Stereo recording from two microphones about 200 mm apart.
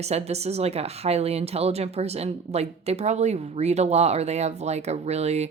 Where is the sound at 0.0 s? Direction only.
30° right (ahead or behind).